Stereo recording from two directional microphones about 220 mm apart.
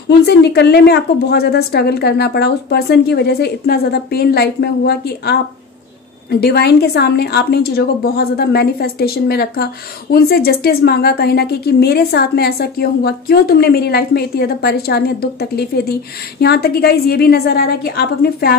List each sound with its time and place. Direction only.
0.2 s a woman's voice: 50° left (ahead or behind)